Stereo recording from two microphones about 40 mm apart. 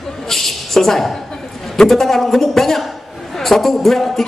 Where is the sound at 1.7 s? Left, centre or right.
Centre.